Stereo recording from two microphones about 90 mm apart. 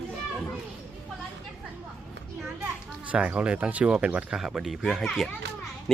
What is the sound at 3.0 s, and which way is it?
Speech, 15° right (ahead or behind).